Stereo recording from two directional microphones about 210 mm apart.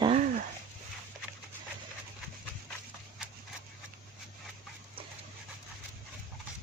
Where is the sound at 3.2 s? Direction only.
5° right (ahead or behind).